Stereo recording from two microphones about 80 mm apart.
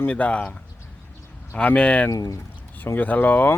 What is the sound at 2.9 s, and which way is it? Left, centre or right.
Speech, left.